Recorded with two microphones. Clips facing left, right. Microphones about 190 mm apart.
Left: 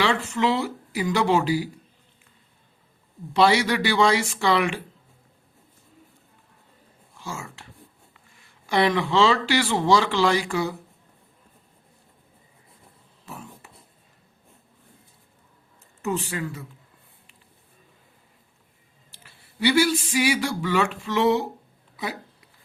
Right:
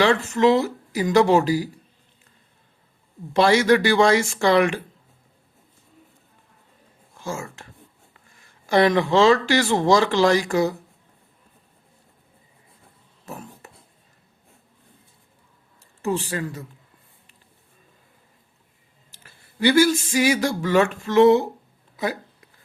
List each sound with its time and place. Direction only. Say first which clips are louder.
0.0 s speech: right 5 dB; 45° right (ahead or behind)
3.4 s speech: right 3 dB; 45° right (ahead or behind)
7.2 s speech: right 5 dB; 45° right (ahead or behind)
13.2 s a sound: right 3 dB; 45° right (ahead or behind)
16.0 s speech: right 3 dB; 35° right (ahead or behind)
19.1 s speech: right 2 dB; 45° right (ahead or behind)